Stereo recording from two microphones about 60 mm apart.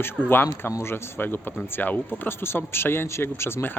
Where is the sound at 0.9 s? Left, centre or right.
Left.